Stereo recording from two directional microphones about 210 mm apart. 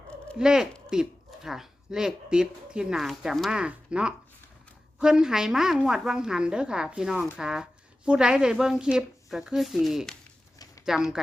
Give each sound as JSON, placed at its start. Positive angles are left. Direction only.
{"t": 0.3, "sound": "a woman's voice", "side_deg": -5}